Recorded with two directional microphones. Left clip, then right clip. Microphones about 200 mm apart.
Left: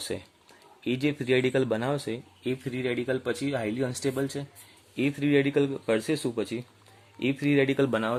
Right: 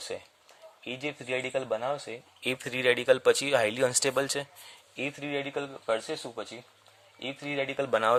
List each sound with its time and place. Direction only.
0.9 s speech: centre (ahead or behind)
2.4 s speech: 40° right (ahead or behind)
4.9 s a man's voice: 5° right (ahead or behind)
7.9 s speech: 20° right (ahead or behind)